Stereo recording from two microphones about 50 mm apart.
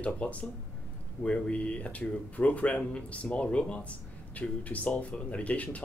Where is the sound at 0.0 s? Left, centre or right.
Left.